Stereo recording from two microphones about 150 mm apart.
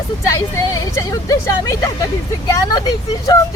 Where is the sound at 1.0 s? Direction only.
20° left (ahead or behind).